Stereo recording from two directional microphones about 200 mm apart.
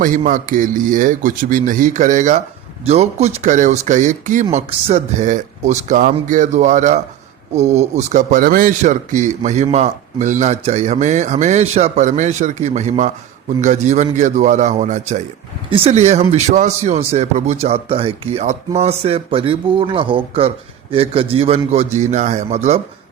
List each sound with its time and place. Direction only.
0.0 s a man's voice: 40° right (ahead or behind)